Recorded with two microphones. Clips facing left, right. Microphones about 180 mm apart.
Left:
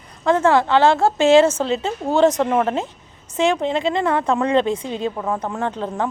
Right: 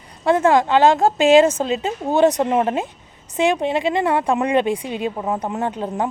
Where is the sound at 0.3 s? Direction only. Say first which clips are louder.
Right 1 dB; 15° right (ahead or behind).